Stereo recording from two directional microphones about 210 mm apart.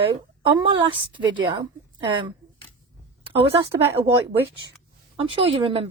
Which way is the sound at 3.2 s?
25° right (ahead or behind).